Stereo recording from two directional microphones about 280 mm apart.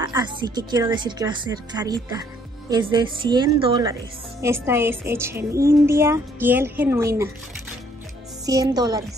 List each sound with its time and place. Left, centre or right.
0.0 s a woman's voice: centre
8.5 s a woman's voice: centre